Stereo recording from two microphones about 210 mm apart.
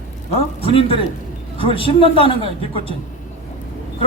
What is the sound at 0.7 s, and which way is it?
Speech, 25° left (ahead or behind).